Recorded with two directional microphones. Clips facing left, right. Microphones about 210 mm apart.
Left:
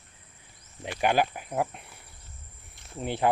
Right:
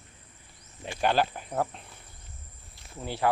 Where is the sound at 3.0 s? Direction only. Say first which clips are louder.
Left 4 dB; 20° left (ahead or behind).